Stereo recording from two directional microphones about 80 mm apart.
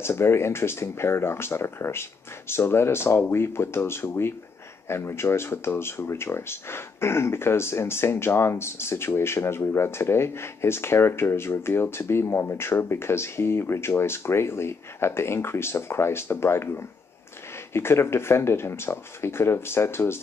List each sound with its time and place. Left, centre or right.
0.0 s speech: left